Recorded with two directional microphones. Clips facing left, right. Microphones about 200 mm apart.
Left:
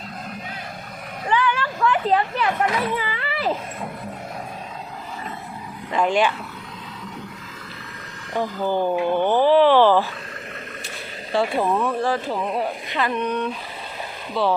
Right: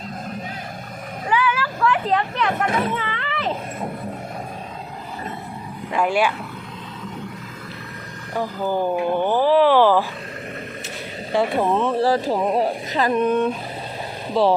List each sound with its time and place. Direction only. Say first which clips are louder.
1.3 s a sound: even; 5° right (ahead or behind)
5.9 s speech: even; 10° right (ahead or behind)
8.3 s speech: even; 5° right (ahead or behind)
11.6 s speech: right 2 dB; 20° right (ahead or behind)
12.0 s speech: right 4 dB; 35° right (ahead or behind)